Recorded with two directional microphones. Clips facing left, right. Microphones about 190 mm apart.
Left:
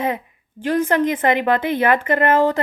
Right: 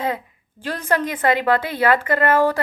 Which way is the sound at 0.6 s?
20° left (ahead or behind).